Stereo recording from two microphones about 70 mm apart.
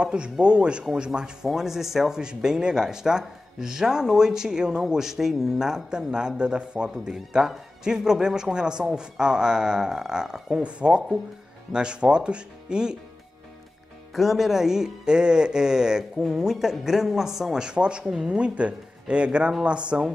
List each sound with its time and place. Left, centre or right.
0.0 s speech: centre
14.1 s speech: centre